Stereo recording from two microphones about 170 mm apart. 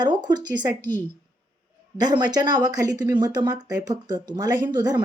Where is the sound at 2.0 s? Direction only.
25° right (ahead or behind).